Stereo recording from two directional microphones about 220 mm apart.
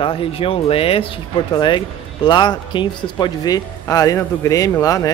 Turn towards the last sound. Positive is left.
turn(degrees=15)  # may be behind; listen again after turning